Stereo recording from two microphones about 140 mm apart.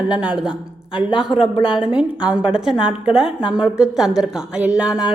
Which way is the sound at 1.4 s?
40° left (ahead or behind).